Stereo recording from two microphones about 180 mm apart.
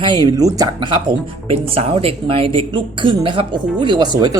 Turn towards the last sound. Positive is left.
turn(degrees=-25)  # may be behind; listen again after turning